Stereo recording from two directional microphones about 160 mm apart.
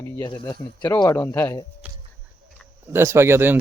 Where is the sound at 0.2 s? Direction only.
25° left (ahead or behind).